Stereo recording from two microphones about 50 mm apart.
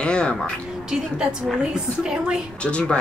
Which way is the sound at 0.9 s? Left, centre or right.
Centre.